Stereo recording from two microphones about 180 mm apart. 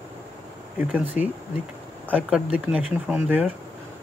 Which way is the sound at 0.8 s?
10° right (ahead or behind).